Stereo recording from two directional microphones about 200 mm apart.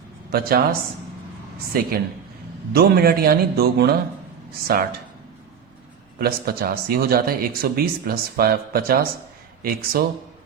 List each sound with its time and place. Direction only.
0.3 s speech: 50° right (ahead or behind)
6.1 s speech: 50° right (ahead or behind)